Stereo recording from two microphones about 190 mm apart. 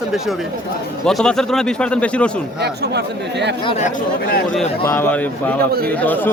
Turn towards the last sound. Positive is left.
turn(degrees=10)  # may be behind; listen again after turning